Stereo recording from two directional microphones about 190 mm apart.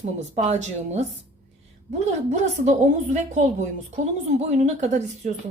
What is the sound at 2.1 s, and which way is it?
A woman's voice, 40° right (ahead or behind).